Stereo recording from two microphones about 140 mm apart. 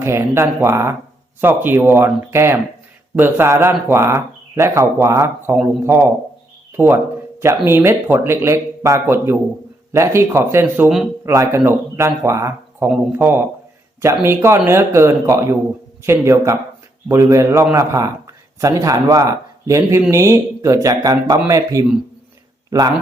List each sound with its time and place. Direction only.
0.0 s a man's voice: 20° right (ahead or behind)
10.8 s speech: 5° right (ahead or behind)
11.3 s a man's voice: 20° right (ahead or behind)